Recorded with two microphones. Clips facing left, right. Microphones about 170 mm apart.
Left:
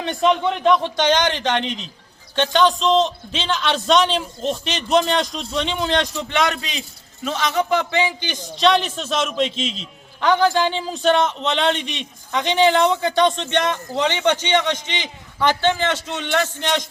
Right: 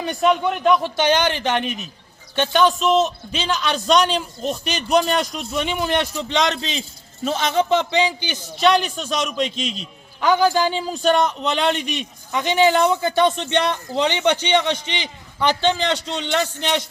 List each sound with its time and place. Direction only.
0.0 s a man's voice: 5° right (ahead or behind)
6.2 s a man's voice: 20° right (ahead or behind)